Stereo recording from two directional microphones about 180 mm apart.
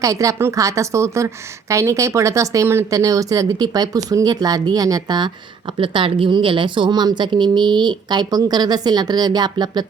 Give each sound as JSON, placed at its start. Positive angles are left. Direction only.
{"t": 0.0, "sound": "a woman's voice", "side_deg": -20}